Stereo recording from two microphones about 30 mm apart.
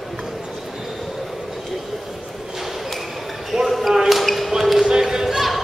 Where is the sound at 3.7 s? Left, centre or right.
Centre.